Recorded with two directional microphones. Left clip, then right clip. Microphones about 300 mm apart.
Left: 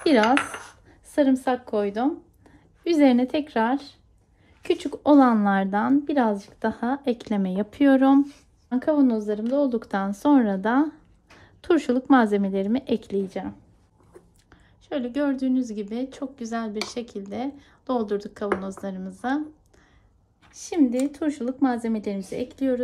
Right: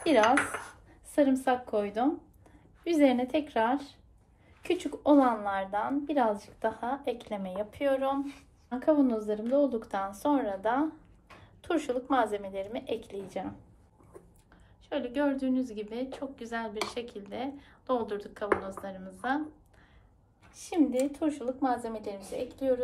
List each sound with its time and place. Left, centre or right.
0.0 s a woman's voice: left
14.5 s a woman's voice: centre
21.1 s a woman's voice: left